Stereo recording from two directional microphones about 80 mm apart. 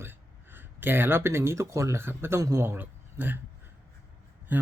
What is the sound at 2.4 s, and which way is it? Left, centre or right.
Speech, right.